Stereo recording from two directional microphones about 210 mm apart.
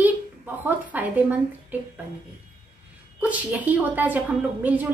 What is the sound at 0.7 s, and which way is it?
Speech, 10° right (ahead or behind).